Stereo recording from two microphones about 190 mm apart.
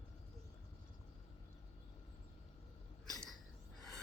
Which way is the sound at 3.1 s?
Centre (ahead or behind).